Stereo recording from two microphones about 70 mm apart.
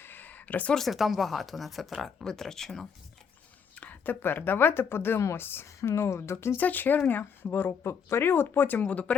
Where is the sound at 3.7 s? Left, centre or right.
Left.